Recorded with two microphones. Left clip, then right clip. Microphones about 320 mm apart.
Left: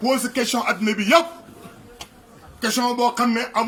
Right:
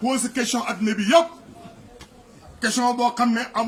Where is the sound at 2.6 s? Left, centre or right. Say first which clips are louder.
Even; centre.